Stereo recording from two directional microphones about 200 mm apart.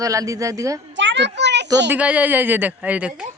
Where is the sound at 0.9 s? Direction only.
65° right (ahead or behind).